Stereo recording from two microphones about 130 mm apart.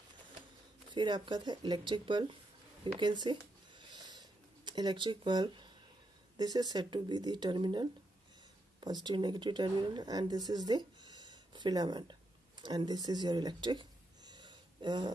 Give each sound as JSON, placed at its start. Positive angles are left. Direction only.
{"t": 0.8, "sound": "speech", "side_deg": -35}
{"t": 3.0, "sound": "a sound", "side_deg": -35}
{"t": 6.3, "sound": "speech", "side_deg": -30}
{"t": 9.0, "sound": "speech", "side_deg": -35}